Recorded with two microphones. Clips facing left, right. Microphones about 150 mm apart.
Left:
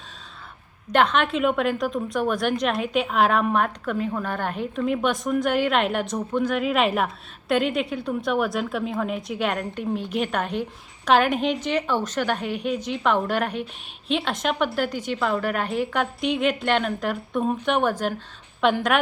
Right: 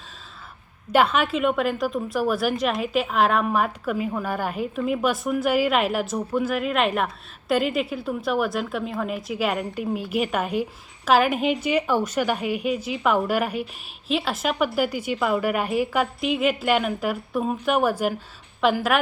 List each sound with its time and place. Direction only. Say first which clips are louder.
0.9 s a woman's voice: even; 5° right (ahead or behind)